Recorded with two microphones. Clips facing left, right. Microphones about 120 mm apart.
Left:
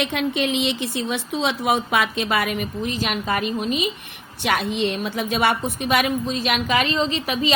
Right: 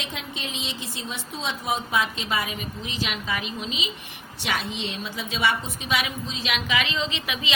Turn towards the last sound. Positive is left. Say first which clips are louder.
# left 7 dB
turn(degrees=40)  # may be behind; listen again after turning